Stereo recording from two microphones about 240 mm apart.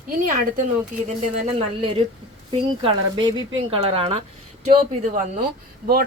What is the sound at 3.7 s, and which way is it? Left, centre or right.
Speech, right.